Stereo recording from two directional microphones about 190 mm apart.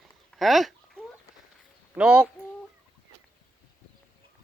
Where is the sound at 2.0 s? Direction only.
5° right (ahead or behind).